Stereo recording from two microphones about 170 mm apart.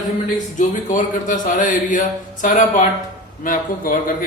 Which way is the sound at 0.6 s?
50° left (ahead or behind).